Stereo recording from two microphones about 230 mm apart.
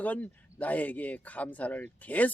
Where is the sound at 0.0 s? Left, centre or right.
Centre.